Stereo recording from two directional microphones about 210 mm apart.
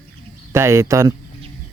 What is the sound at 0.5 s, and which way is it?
Speech, 15° right (ahead or behind).